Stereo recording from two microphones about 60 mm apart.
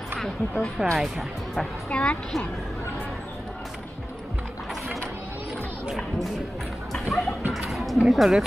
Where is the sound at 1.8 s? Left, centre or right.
Centre.